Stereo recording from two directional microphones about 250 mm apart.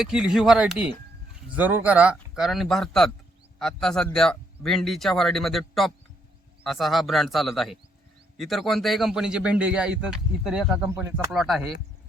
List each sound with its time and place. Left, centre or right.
0.0 s a man's voice: centre